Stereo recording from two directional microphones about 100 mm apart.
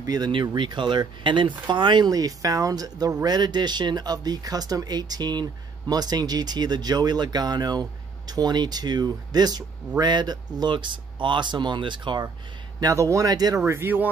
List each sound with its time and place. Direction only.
0.0 s speech: 40° right (ahead or behind)
0.6 s speech: 50° right (ahead or behind)
12.8 s a man's voice: 30° right (ahead or behind)
13.7 s speech: 20° right (ahead or behind)